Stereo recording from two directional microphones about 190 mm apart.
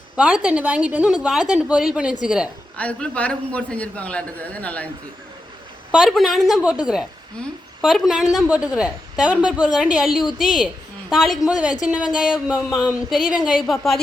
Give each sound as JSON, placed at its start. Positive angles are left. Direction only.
{"t": 0.2, "sound": "a woman's voice", "side_deg": -5}
{"t": 2.7, "sound": "a man's voice", "side_deg": 5}
{"t": 5.9, "sound": "a woman's voice", "side_deg": 0}